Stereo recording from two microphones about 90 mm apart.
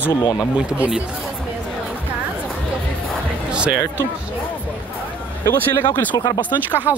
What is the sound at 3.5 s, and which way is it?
Speech, 10° right (ahead or behind).